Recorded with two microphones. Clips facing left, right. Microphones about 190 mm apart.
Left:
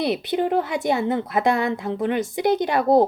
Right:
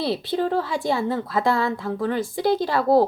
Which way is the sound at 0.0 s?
20° left (ahead or behind).